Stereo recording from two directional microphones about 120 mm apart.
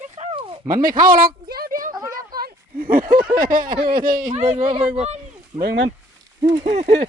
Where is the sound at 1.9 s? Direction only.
35° right (ahead or behind).